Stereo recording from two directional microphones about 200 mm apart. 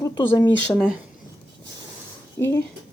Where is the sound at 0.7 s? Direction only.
5° right (ahead or behind).